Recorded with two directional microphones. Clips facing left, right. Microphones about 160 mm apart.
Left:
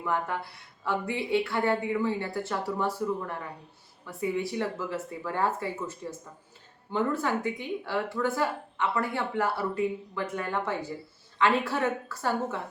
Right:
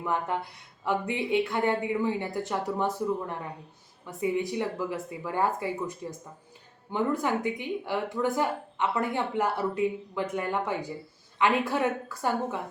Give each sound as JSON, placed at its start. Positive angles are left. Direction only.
{"t": 0.0, "sound": "speech", "side_deg": -20}